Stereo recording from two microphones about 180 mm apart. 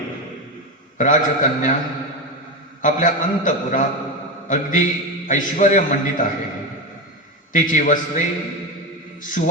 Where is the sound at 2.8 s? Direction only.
45° left (ahead or behind).